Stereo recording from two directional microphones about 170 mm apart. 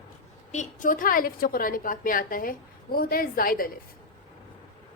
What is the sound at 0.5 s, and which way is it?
A woman's voice, 45° left (ahead or behind).